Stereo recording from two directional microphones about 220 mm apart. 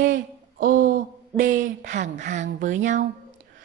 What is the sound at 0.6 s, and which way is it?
Speech, 40° right (ahead or behind).